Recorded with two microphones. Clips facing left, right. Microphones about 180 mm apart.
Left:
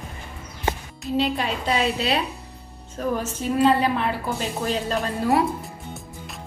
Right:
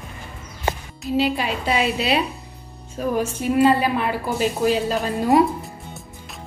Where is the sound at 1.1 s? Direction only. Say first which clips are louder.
Right 2 dB; 5° right (ahead or behind).